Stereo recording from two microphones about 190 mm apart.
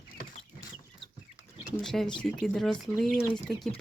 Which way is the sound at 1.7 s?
Centre (ahead or behind).